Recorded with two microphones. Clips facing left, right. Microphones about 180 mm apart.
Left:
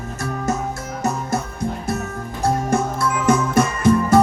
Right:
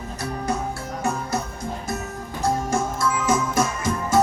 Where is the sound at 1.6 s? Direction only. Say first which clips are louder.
Left 5 dB; 60° left (ahead or behind).